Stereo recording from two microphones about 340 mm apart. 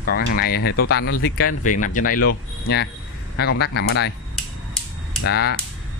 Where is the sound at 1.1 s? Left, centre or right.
Left.